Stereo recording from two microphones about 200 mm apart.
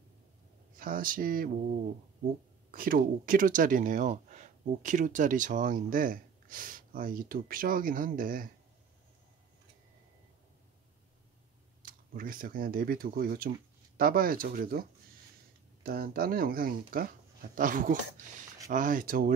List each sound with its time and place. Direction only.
0.7 s speech: 45° right (ahead or behind)
2.7 s speech: 45° right (ahead or behind)
11.8 s speech: 45° right (ahead or behind)